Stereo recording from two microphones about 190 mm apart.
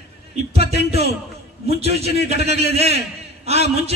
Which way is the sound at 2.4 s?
35° right (ahead or behind).